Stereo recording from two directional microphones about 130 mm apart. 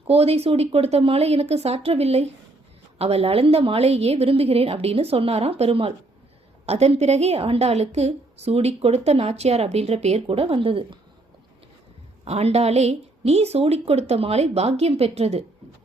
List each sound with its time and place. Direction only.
0.1 s a woman's voice: 50° right (ahead or behind)
12.2 s a woman's voice: 55° right (ahead or behind)